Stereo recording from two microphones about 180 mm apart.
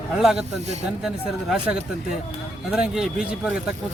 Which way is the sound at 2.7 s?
5° right (ahead or behind).